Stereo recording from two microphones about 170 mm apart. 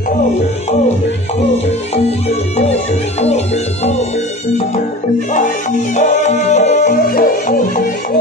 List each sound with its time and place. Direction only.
1.7 s music: 40° left (ahead or behind)
5.3 s music: 50° left (ahead or behind)